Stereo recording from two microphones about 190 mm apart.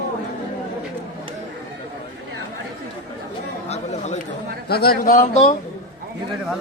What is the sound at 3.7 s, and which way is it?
Chatter, 35° left (ahead or behind).